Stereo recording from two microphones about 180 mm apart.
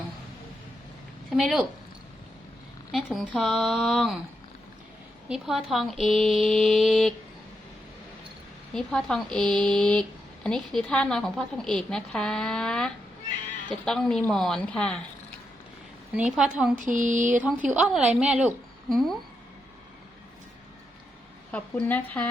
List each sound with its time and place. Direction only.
1.4 s a woman's voice: centre (ahead or behind)
2.9 s a woman's voice: centre (ahead or behind)
5.3 s a woman's voice: centre (ahead or behind)
8.7 s a woman's voice: 5° left (ahead or behind)
16.1 s a woman's voice: centre (ahead or behind)
16.7 s a sound: 45° right (ahead or behind)
17.7 s a woman's voice: 5° right (ahead or behind)
21.5 s a woman's voice: 10° left (ahead or behind)